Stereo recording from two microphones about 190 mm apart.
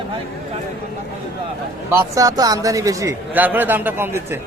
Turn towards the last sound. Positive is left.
turn(degrees=-10)  # may be behind; listen again after turning